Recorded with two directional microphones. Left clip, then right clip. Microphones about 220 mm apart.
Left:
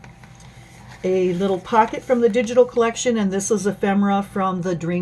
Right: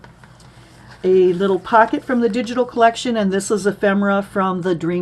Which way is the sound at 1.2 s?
35° right (ahead or behind).